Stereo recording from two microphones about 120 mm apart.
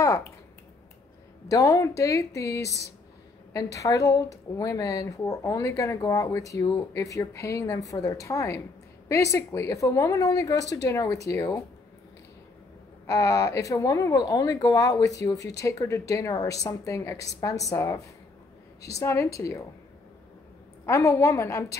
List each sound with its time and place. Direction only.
1.5 s speech: 30° left (ahead or behind)
13.0 s speech: 25° left (ahead or behind)
20.8 s speech: 25° left (ahead or behind)